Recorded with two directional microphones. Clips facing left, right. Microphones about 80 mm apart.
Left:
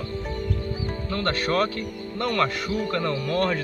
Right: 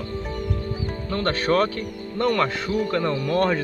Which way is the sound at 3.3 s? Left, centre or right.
Right.